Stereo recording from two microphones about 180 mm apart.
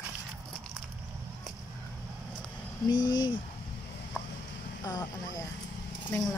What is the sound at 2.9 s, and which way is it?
Speech, 25° left (ahead or behind).